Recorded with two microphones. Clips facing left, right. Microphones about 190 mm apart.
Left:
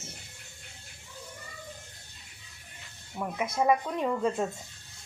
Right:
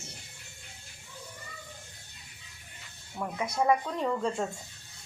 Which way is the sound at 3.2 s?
10° left (ahead or behind).